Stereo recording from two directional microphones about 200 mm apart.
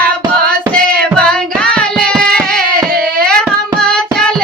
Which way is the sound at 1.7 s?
5° left (ahead or behind).